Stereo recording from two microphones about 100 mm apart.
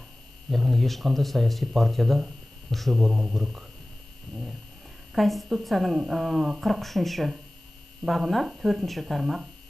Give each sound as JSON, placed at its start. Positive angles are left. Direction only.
{"t": 0.5, "sound": "speech", "side_deg": 0}
{"t": 5.1, "sound": "speech", "side_deg": 0}